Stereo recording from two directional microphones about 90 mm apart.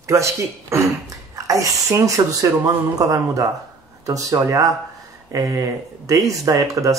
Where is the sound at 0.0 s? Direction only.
35° right (ahead or behind).